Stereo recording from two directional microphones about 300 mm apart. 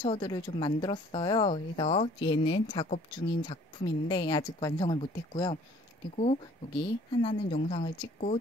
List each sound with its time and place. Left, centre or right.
0.0 s a woman's voice: centre